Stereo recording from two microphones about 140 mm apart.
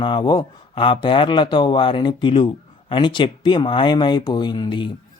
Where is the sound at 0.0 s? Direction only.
35° left (ahead or behind).